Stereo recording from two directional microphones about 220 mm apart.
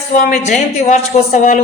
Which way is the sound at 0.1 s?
35° left (ahead or behind).